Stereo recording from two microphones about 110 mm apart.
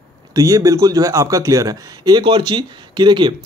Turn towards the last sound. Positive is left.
turn(degrees=-45)  # may be behind; listen again after turning